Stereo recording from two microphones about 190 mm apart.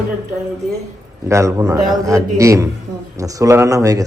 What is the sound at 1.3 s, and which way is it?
A man's voice, 15° right (ahead or behind).